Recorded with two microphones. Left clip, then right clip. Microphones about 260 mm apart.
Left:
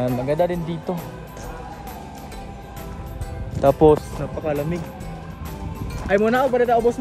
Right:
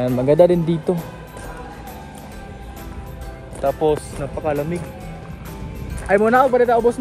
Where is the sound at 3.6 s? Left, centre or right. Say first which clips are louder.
Left 4 dB; left.